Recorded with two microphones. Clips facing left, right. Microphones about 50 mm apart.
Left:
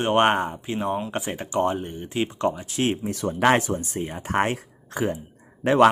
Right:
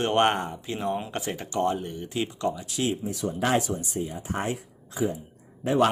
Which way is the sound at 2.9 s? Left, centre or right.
Left.